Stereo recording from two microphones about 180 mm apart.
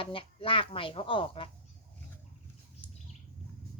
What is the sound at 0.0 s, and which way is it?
A woman's voice, 30° left (ahead or behind).